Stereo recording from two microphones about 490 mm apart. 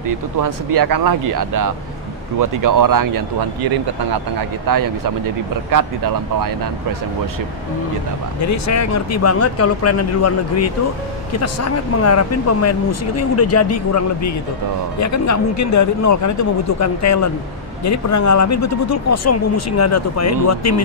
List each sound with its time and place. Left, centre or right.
0.1 s speech: right
8.5 s speech: left